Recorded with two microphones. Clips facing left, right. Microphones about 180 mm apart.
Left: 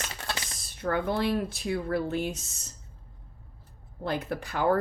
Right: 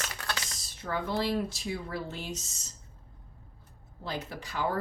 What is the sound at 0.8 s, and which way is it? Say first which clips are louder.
Speech: left 4 dB; 55° left (ahead or behind).